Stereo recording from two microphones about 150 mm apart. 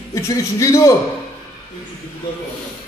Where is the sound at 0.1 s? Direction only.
20° left (ahead or behind).